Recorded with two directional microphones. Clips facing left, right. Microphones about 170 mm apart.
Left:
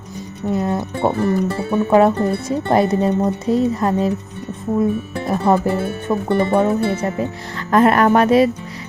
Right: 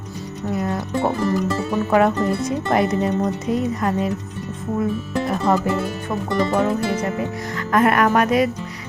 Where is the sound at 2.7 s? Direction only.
30° left (ahead or behind).